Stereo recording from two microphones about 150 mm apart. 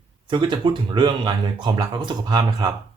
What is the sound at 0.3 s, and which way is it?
Speech, 30° right (ahead or behind).